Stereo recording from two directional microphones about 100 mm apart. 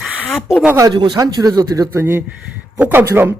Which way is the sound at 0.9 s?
50° right (ahead or behind).